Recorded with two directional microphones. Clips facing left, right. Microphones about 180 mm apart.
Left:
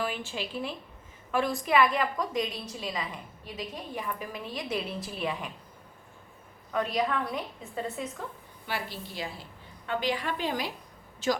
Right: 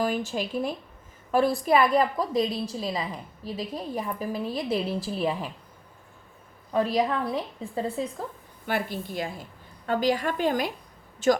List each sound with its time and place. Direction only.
0.0 s a woman's voice: 40° right (ahead or behind)
6.7 s a woman's voice: 30° right (ahead or behind)
8.6 s a woman's voice: 50° right (ahead or behind)